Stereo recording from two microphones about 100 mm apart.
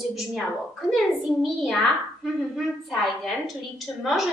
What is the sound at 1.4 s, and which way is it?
Speech, centre (ahead or behind).